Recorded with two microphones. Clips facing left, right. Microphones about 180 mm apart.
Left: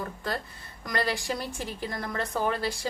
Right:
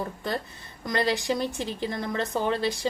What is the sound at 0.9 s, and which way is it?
A woman's voice, 20° right (ahead or behind).